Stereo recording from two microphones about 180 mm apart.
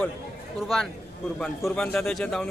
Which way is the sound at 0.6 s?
Centre (ahead or behind).